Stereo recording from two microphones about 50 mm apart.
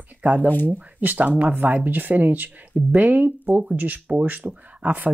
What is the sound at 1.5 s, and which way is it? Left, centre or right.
Speech, right.